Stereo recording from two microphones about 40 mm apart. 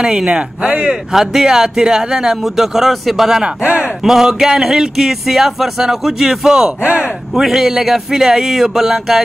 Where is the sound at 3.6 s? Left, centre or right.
Right.